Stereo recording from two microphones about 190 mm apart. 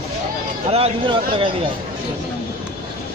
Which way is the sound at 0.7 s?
30° right (ahead or behind).